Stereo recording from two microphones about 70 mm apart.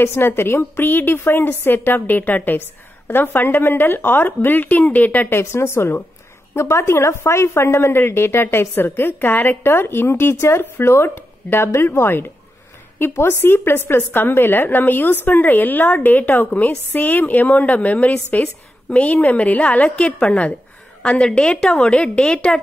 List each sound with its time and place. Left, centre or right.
0.0 s a woman's voice: left
5.4 s a woman's voice: left; by 22.6 s centre